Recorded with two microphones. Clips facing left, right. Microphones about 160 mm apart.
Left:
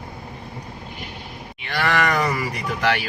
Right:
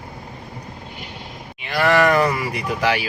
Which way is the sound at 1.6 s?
5° right (ahead or behind).